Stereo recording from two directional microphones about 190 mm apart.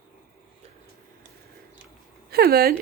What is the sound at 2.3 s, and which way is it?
Speech, 55° right (ahead or behind).